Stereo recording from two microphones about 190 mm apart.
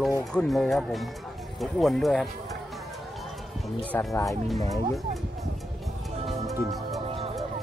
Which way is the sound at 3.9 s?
15° left (ahead or behind).